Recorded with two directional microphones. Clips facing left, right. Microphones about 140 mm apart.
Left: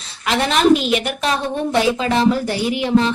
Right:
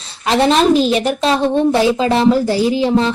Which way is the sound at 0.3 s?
30° right (ahead or behind).